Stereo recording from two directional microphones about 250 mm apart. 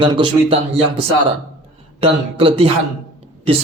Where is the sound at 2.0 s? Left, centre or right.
Right.